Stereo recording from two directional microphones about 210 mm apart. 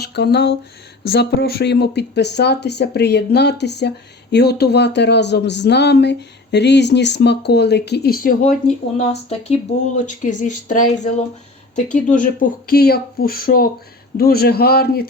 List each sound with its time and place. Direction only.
0.0 s speech: 50° left (ahead or behind)
9.0 s speech: 30° left (ahead or behind); by 15.0 s 50° left (ahead or behind)